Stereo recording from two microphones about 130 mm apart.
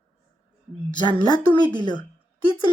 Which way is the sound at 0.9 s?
35° left (ahead or behind).